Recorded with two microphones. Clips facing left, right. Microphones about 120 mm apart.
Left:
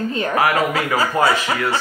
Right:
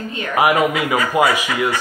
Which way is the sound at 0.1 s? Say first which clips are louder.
Left 4 dB; 35° left (ahead or behind).